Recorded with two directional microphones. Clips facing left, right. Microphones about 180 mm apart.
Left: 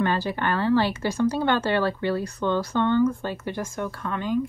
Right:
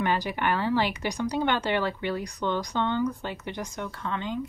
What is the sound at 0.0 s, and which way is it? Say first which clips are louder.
Speech: left 2 dB; 15° right (ahead or behind).